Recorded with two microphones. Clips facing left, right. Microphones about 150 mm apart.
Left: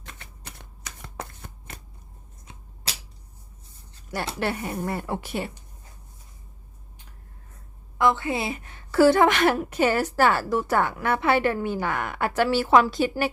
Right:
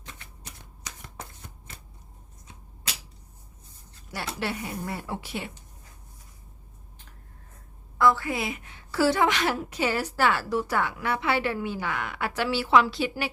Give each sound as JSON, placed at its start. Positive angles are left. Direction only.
{"t": 0.4, "sound": "shuffling cards", "side_deg": 80}
{"t": 4.4, "sound": "a woman's voice", "side_deg": 50}
{"t": 7.9, "sound": "a woman's voice", "side_deg": 20}
{"t": 8.6, "sound": "a woman's voice", "side_deg": 50}